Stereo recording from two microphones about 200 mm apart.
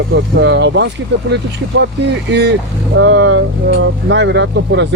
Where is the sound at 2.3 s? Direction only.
60° right (ahead or behind).